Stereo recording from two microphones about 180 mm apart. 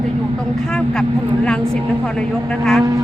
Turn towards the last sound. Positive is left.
turn(degrees=-20)  # may be behind; listen again after turning